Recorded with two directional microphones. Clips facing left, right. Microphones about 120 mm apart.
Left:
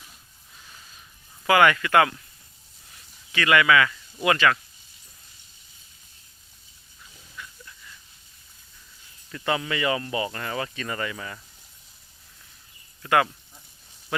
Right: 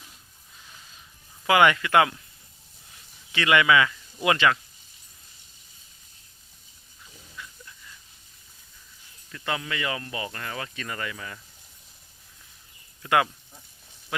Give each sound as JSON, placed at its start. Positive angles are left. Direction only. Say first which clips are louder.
{"t": 1.5, "sound": "speech", "louder": "left 1 dB", "side_deg": -20}
{"t": 3.3, "sound": "speech", "louder": "left 1 dB", "side_deg": -20}
{"t": 9.3, "sound": "speech", "louder": "left 4 dB", "side_deg": 5}
{"t": 13.0, "sound": "speech", "louder": "left 1 dB", "side_deg": -15}